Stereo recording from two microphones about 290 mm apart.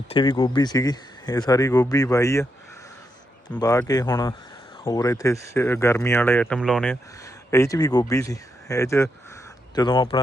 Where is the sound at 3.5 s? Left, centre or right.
Centre.